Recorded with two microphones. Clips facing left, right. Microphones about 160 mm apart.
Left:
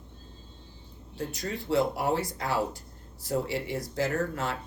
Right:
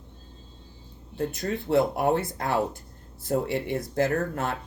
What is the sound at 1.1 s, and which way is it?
Speech, 55° right (ahead or behind).